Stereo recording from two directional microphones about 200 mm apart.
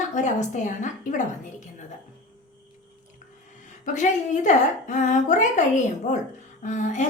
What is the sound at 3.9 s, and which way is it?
A woman's voice, 40° left (ahead or behind).